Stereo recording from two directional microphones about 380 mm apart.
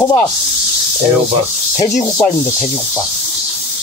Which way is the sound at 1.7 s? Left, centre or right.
Centre.